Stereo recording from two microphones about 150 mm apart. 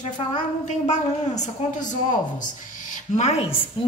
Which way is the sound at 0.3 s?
50° left (ahead or behind).